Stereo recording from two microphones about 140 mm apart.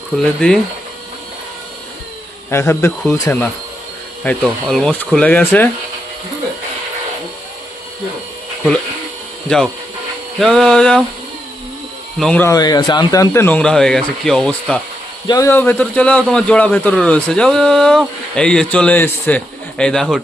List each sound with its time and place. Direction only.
0.2 s a sound: 5° left (ahead or behind)
2.5 s a man's voice: 20° left (ahead or behind)
10.4 s a sound: 5° left (ahead or behind)
12.2 s a man's voice: 10° left (ahead or behind)
12.5 s a man's voice: 30° left (ahead or behind); by 14.8 s 5° left (ahead or behind)
15.3 s a man's voice: 20° left (ahead or behind); by 20.2 s centre (ahead or behind)